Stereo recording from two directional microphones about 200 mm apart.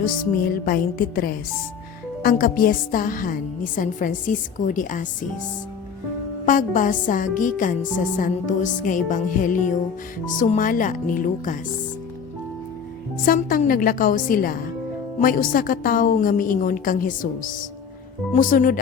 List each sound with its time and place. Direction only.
0.0 s a woman's voice: 45° left (ahead or behind)
6.4 s a woman's voice: 40° left (ahead or behind)
13.2 s a woman's voice: 45° left (ahead or behind)